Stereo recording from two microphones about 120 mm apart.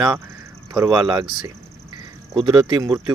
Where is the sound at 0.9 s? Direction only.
40° right (ahead or behind).